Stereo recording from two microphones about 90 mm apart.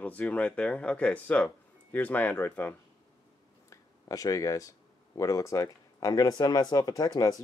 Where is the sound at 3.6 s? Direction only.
40° left (ahead or behind).